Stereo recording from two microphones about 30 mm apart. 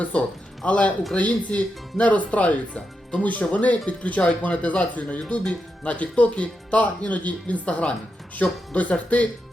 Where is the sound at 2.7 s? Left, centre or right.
Left.